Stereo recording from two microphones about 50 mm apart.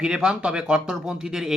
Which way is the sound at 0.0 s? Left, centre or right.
Centre.